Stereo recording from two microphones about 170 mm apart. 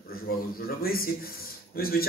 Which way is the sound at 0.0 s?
60° left (ahead or behind).